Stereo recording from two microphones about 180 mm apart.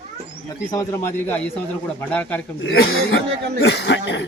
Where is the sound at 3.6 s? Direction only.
65° left (ahead or behind).